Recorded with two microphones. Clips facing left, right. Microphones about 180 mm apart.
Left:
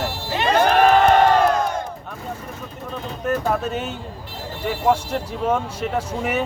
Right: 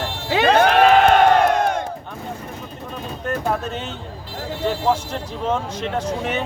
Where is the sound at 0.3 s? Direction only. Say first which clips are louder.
Right 3 dB; 85° right.